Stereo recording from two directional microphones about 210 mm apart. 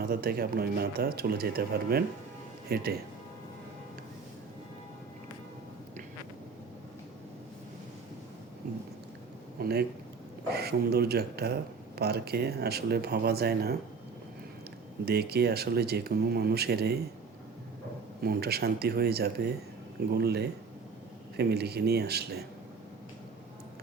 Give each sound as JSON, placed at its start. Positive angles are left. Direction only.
{"t": 0.0, "sound": "speech", "side_deg": -45}
{"t": 9.6, "sound": "a sound", "side_deg": -50}
{"t": 10.5, "sound": "speech", "side_deg": -50}
{"t": 15.0, "sound": "speech", "side_deg": -50}
{"t": 18.2, "sound": "speech", "side_deg": -50}